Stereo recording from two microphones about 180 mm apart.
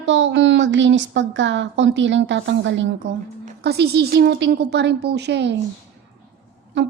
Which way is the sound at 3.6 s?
65° right (ahead or behind).